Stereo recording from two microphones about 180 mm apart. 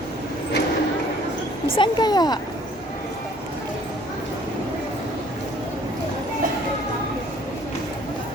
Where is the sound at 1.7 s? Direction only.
25° left (ahead or behind).